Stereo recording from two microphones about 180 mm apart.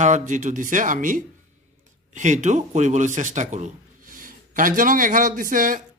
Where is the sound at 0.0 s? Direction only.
40° right (ahead or behind).